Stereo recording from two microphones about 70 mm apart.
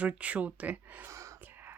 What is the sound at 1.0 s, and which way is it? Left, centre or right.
Gasp, right.